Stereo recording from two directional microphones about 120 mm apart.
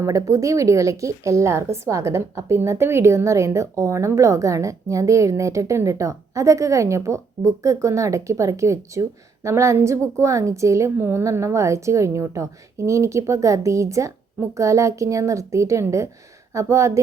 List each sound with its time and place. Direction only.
0.0 s a woman's voice: 25° right (ahead or behind)